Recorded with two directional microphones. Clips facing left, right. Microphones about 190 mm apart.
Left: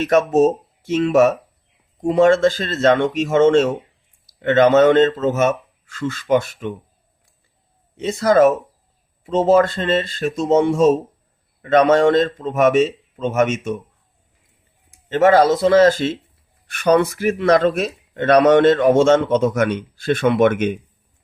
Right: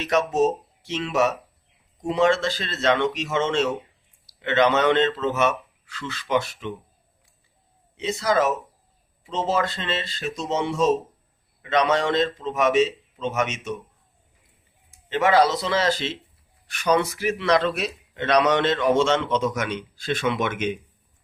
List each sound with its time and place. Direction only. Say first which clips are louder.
0.0 s speech: left 6 dB; 50° left (ahead or behind)
7.9 s speech: left 8 dB; 50° left (ahead or behind)
15.1 s speech: left 6 dB; 50° left (ahead or behind)